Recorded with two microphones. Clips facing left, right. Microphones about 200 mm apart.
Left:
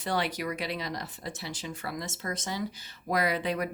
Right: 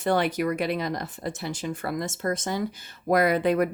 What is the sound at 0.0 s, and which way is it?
Speech, 50° right (ahead or behind).